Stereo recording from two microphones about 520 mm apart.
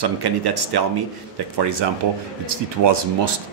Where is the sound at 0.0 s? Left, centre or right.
Right.